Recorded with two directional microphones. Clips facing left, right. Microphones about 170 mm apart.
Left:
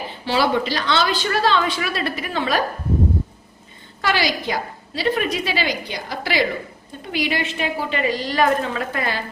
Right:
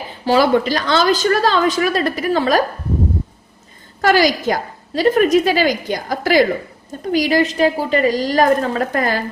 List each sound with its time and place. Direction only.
0.2 s a woman's voice: 45° right (ahead or behind)
4.0 s a woman's voice: 45° right (ahead or behind)